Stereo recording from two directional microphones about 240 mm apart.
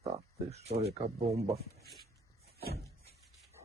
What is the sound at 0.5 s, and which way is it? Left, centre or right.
Speech, right.